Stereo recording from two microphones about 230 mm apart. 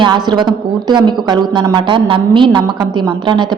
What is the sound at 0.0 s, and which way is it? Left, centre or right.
A woman's voice, centre.